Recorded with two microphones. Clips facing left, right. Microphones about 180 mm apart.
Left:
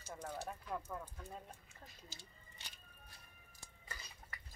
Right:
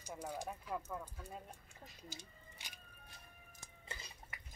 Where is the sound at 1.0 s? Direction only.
10° right (ahead or behind).